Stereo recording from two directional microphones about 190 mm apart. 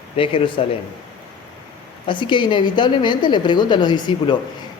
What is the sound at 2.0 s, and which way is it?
A man's voice, 25° left (ahead or behind).